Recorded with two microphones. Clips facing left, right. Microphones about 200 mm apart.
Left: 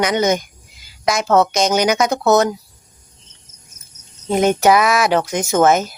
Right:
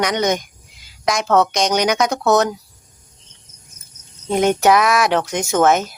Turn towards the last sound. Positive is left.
turn(degrees=0)  # may be behind; listen again after turning